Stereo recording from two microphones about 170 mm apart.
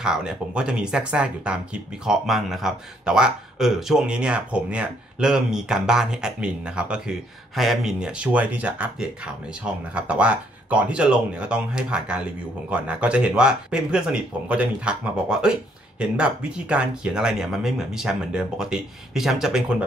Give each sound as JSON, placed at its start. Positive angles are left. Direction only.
{"t": 0.0, "sound": "speech", "side_deg": -5}